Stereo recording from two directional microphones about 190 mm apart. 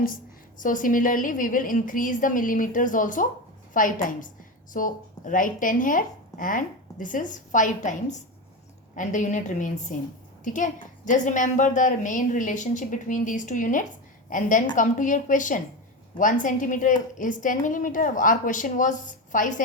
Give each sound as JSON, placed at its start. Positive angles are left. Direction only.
{"t": 0.6, "sound": "a woman's voice", "side_deg": 45}